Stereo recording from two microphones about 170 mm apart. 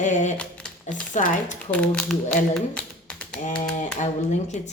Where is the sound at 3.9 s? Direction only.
45° left (ahead or behind).